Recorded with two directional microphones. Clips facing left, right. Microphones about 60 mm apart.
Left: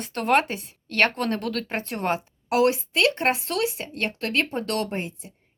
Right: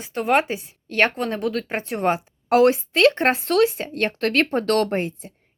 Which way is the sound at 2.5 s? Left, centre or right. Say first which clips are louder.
Right 5 dB; right.